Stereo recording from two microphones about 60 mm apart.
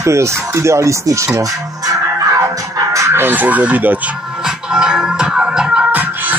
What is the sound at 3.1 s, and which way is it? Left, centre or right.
Speech, right.